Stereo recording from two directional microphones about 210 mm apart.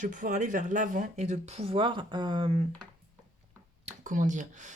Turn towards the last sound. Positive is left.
turn(degrees=-35)  # may be behind; listen again after turning